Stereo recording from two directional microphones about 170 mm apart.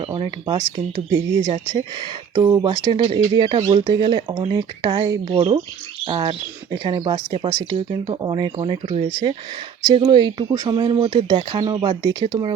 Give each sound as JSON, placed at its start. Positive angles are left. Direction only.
{"t": 0.0, "sound": "speech", "side_deg": -30}